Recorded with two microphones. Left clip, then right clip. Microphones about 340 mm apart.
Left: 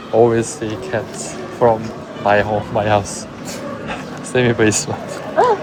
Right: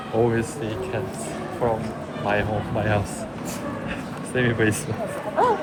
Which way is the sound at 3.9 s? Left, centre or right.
Centre.